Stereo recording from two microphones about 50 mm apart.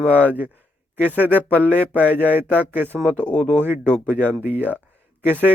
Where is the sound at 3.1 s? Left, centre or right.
Left.